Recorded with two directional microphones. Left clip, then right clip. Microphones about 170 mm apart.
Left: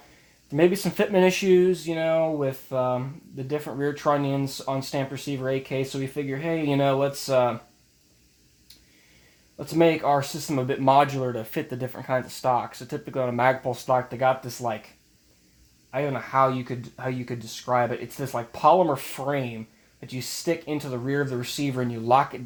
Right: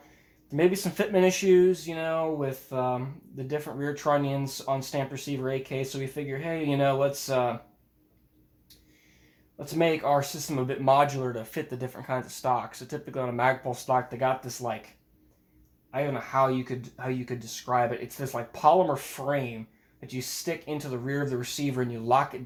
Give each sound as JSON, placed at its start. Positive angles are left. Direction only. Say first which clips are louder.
{"t": 0.5, "sound": "speech", "louder": "left 3 dB", "side_deg": 50}
{"t": 9.6, "sound": "speech", "louder": "left 5 dB", "side_deg": 50}
{"t": 15.9, "sound": "speech", "louder": "left 3 dB", "side_deg": 45}